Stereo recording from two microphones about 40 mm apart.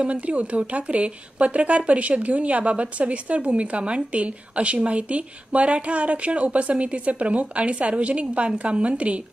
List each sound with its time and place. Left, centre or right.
0.1 s a woman's voice: right